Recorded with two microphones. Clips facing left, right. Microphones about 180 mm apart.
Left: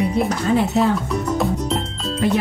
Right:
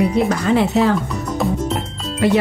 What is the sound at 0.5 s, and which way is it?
Music, 90° right.